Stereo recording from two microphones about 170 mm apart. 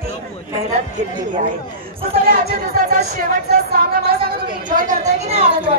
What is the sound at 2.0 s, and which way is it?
Speech, 60° right (ahead or behind).